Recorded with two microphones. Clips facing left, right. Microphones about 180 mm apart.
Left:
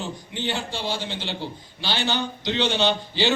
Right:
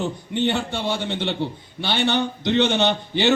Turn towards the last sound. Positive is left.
turn(degrees=-55)  # may be behind; listen again after turning